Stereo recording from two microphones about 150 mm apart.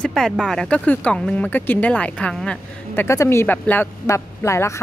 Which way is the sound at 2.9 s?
20° left (ahead or behind).